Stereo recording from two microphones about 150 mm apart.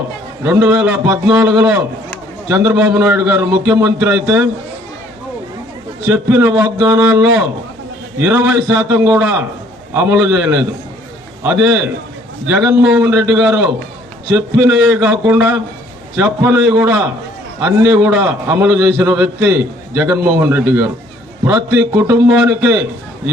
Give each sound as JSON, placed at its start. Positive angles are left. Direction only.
{"t": 0.4, "sound": "a man's voice", "side_deg": -15}
{"t": 6.1, "sound": "a man's voice", "side_deg": -15}